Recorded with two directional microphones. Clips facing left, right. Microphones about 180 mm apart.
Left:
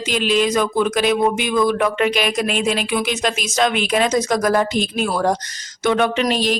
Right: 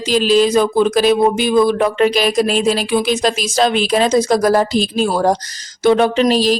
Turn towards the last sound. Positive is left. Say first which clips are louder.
# right 5 dB
turn(degrees=-35)  # may be behind; listen again after turning